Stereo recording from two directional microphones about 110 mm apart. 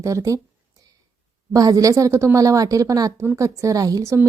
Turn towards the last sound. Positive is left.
turn(degrees=-25)  # may be behind; listen again after turning